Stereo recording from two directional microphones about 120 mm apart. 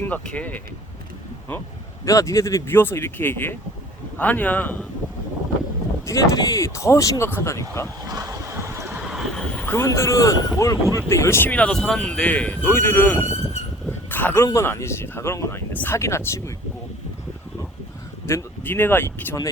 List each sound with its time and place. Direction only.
0.0 s speech: 10° left (ahead or behind)
2.0 s speech: 25° left (ahead or behind)
6.1 s speech: 25° left (ahead or behind)
8.0 s speech: 30° right (ahead or behind)
8.9 s vehicle: 5° right (ahead or behind)
9.6 s speech: 20° left (ahead or behind)
14.1 s a sound: 15° left (ahead or behind)
14.4 s speech: 25° left (ahead or behind)
18.3 s speech: 20° left (ahead or behind)